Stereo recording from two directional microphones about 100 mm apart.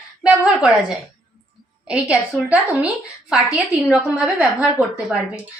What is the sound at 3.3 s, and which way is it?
A woman's voice, 10° right (ahead or behind).